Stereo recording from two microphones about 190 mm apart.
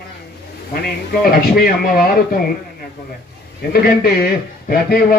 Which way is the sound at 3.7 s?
50° left (ahead or behind).